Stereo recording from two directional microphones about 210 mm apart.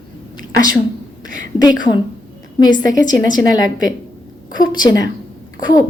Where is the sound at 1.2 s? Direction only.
40° right (ahead or behind).